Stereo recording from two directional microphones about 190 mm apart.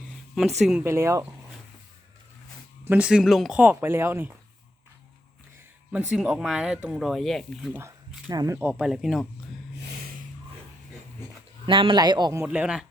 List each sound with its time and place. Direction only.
0.6 s speech: 5° right (ahead or behind)
0.9 s speech: 15° right (ahead or behind)
2.8 s speech: 10° right (ahead or behind)
5.9 s speech: 5° right (ahead or behind)
7.8 s speech: 20° right (ahead or behind)
8.5 s speech: 5° right (ahead or behind)
11.6 s a man's voice: 25° right (ahead or behind); by 12.8 s 5° right (ahead or behind)